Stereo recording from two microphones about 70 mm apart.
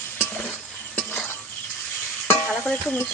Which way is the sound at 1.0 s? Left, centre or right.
Left.